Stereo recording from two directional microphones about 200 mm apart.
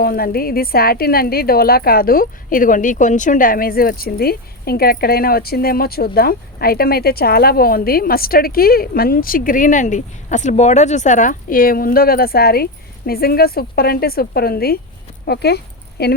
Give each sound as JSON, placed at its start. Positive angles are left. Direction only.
{"t": 0.0, "sound": "a woman's voice", "side_deg": 50}